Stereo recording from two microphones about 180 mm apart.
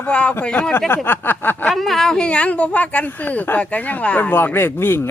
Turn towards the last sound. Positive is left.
turn(degrees=10)  # may be behind; listen again after turning